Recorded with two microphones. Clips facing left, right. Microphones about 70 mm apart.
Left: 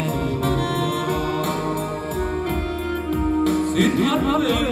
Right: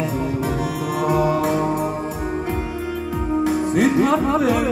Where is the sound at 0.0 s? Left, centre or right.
Centre.